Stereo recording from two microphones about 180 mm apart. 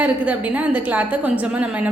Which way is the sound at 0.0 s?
10° right (ahead or behind).